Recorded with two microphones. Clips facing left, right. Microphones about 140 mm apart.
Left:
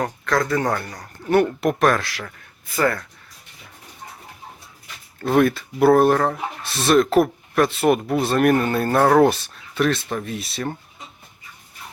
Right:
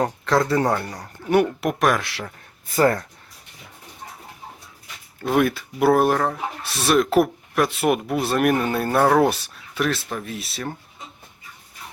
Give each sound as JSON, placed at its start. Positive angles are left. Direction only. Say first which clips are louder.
{"t": 0.0, "sound": "a man's voice", "louder": "right 2 dB", "side_deg": -25}
{"t": 1.3, "sound": "speech", "louder": "left 1 dB", "side_deg": -10}
{"t": 2.0, "sound": "a man's voice", "louder": "even", "side_deg": -20}
{"t": 2.6, "sound": "speech", "louder": "right 3 dB", "side_deg": -40}
{"t": 5.2, "sound": "speech", "louder": "left 2 dB", "side_deg": -5}